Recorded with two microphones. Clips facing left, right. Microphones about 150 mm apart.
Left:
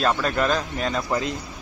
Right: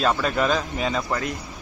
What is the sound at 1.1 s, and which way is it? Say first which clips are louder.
Speech: left 2 dB; 20° left (ahead or behind).